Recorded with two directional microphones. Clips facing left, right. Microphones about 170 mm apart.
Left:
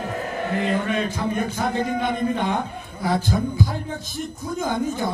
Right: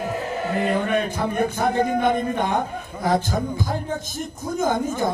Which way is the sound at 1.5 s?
50° right (ahead or behind).